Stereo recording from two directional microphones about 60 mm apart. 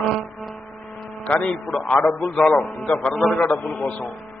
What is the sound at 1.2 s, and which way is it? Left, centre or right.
Speech, left.